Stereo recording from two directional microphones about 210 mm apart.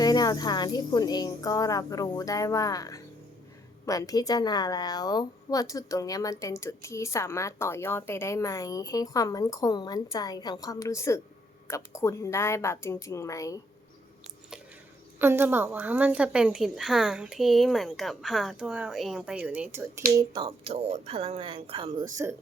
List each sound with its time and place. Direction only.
0.0 s a woman's voice: 20° left (ahead or behind)
15.2 s a woman's voice: 10° right (ahead or behind)
20.1 s speech: 20° right (ahead or behind)